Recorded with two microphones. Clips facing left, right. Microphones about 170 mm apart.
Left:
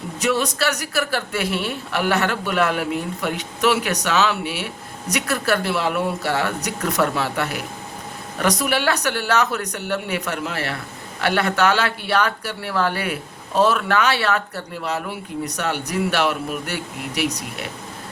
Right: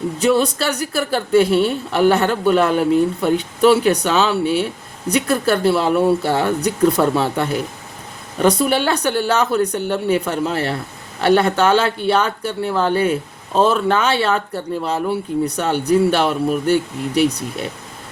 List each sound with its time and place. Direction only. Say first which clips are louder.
0.2 s a woman's voice: right 4 dB; 30° right (ahead or behind)